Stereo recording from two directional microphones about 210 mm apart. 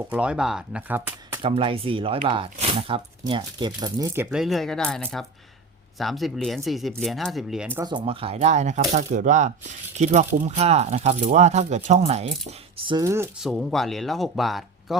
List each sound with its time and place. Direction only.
0.1 s speech: 5° right (ahead or behind)
1.4 s speech: 25° right (ahead or behind); by 7.9 s 5° right (ahead or behind)
7.9 s speech: 25° right (ahead or behind)
13.4 s speech: centre (ahead or behind)